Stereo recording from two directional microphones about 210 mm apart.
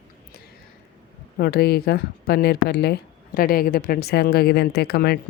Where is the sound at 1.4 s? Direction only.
50° left (ahead or behind).